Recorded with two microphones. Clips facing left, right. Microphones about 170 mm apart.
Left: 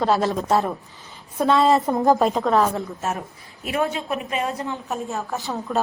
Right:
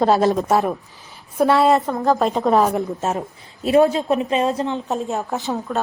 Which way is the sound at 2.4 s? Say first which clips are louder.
Right 3 dB; 20° right (ahead or behind).